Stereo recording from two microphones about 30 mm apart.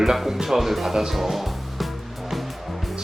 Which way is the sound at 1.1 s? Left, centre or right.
Centre.